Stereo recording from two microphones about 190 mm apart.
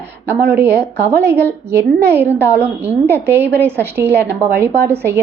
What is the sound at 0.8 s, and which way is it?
Speech, 60° right (ahead or behind).